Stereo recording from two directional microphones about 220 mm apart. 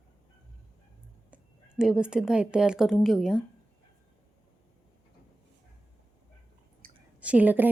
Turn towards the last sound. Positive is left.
turn(degrees=-10)  # may be behind; listen again after turning